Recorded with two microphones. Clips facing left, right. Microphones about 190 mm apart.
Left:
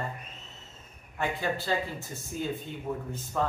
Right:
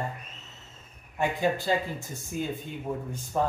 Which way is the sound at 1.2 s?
15° right (ahead or behind).